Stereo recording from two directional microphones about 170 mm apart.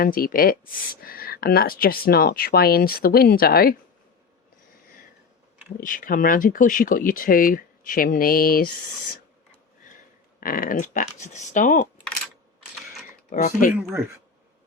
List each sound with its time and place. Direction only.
0.0 s speech: 60° left (ahead or behind)
5.8 s speech: 50° left (ahead or behind)
10.4 s speech: 55° left (ahead or behind)
13.4 s speech: 50° left (ahead or behind)